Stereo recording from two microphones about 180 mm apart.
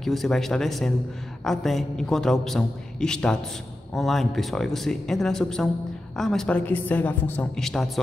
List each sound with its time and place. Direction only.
0.0 s a man's voice: centre (ahead or behind)